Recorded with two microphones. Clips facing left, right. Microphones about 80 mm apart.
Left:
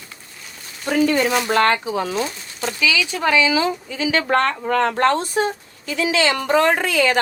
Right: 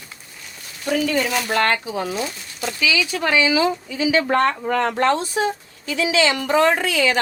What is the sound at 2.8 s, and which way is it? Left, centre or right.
Speech, right.